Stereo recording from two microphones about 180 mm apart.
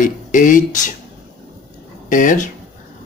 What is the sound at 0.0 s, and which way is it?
Speech, 45° left (ahead or behind).